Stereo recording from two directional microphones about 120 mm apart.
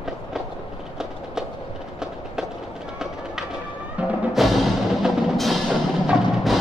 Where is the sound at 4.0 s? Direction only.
10° right (ahead or behind).